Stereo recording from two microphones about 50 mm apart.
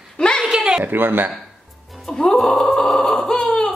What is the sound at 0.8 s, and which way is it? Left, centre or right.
Speech, right.